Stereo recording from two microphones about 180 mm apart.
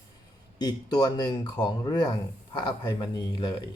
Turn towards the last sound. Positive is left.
turn(degrees=25)  # may be behind; listen again after turning